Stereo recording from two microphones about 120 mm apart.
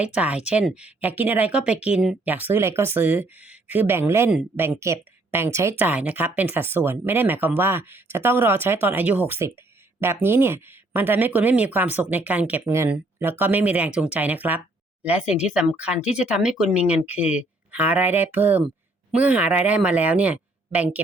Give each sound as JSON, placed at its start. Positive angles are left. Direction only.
{"t": 0.0, "sound": "speech", "side_deg": -10}